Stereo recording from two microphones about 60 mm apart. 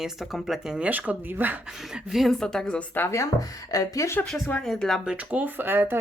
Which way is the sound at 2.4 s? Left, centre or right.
Centre.